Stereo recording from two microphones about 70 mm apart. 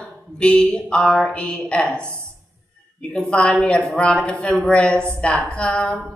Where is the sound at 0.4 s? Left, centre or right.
Centre.